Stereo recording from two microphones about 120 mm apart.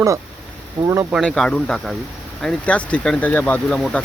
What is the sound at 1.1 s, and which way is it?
Speech, centre (ahead or behind).